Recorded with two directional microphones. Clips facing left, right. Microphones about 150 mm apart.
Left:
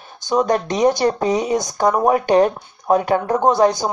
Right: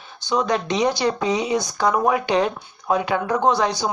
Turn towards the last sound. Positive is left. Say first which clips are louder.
# left 4 dB
turn(degrees=50)  # may be behind; listen again after turning